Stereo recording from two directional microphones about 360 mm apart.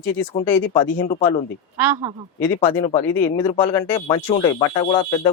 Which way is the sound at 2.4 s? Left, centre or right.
Centre.